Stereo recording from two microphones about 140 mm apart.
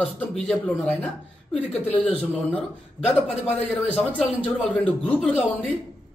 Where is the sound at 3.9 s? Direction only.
5° left (ahead or behind).